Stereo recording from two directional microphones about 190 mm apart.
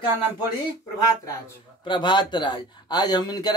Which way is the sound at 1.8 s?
25° left (ahead or behind).